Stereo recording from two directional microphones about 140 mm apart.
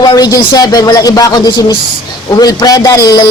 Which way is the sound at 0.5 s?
25° left (ahead or behind).